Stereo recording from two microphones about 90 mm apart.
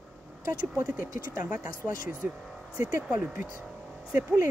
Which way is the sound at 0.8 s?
20° right (ahead or behind).